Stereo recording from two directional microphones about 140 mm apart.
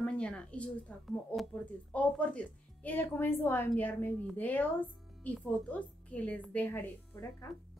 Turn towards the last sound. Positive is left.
turn(degrees=15)  # may be behind; listen again after turning